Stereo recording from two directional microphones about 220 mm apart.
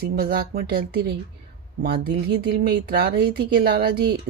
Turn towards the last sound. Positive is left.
turn(degrees=-45)  # may be behind; listen again after turning